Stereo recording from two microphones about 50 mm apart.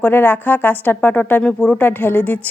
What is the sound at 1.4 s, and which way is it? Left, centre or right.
Speech, left.